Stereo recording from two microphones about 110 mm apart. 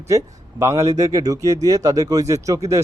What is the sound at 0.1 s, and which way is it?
Speech, 30° right (ahead or behind).